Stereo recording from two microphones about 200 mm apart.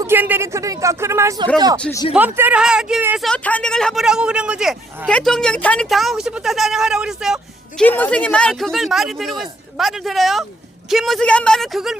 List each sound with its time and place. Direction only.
0.0 s speech: 10° right (ahead or behind)
1.8 s speech: 15° left (ahead or behind)
2.1 s speech: 10° right (ahead or behind)
3.2 s speech: 5° left (ahead or behind)
7.8 s speech: 10° left (ahead or behind)